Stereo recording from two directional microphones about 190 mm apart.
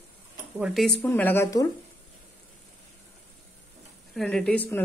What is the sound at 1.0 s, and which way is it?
Speech, 10° left (ahead or behind).